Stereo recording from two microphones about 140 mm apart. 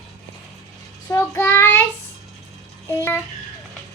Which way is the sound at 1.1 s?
20° left (ahead or behind).